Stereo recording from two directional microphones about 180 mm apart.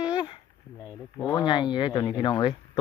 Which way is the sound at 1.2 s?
25° left (ahead or behind).